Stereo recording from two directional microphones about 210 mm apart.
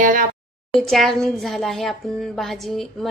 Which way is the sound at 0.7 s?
Centre (ahead or behind).